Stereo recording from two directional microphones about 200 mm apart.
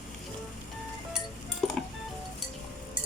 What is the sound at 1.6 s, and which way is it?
Music, centre (ahead or behind).